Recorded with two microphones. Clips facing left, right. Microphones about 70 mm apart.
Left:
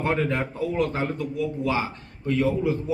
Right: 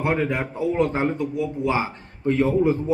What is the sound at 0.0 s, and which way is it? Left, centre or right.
A man's voice, centre.